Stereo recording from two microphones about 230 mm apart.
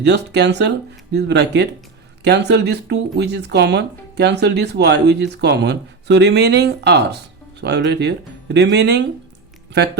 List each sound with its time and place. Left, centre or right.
0.0 s speech: right